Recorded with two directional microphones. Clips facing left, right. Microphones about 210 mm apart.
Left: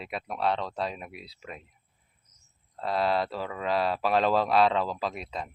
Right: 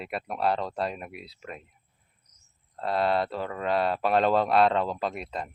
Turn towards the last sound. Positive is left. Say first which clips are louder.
# right 2 dB
turn(degrees=0)  # may be behind; listen again after turning